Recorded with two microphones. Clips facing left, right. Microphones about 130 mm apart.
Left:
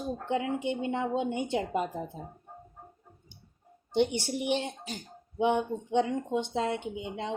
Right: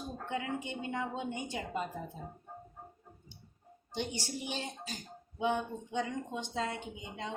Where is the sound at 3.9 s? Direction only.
65° left (ahead or behind).